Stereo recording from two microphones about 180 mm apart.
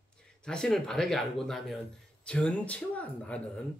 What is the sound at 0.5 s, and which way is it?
Speech, 5° left (ahead or behind).